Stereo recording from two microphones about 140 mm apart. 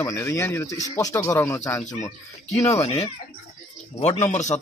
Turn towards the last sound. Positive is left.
turn(degrees=55)  # may be behind; listen again after turning